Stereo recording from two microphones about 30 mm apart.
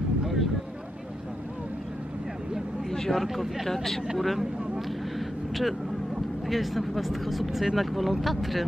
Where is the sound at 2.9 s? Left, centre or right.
Centre.